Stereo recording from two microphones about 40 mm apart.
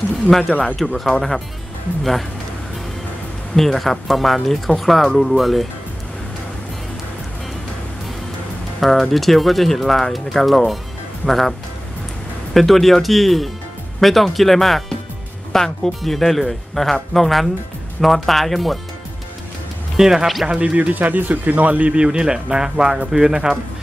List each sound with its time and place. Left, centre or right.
0.3 s speech: centre
1.1 s speech: centre
3.5 s speech: centre
8.7 s speech: centre
12.5 s speech: centre
20.0 s speech: centre
20.7 s speech: right; by 23.5 s centre